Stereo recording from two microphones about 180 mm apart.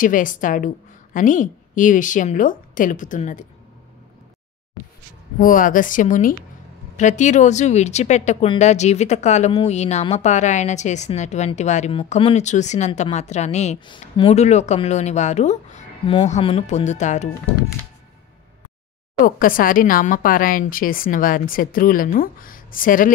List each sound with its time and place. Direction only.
0.0 s speech: 45° left (ahead or behind)
5.4 s speech: 50° left (ahead or behind)
19.2 s speech: 50° left (ahead or behind)